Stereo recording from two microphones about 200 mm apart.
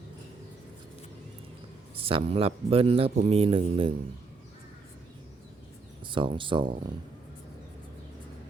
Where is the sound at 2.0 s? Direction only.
30° right (ahead or behind).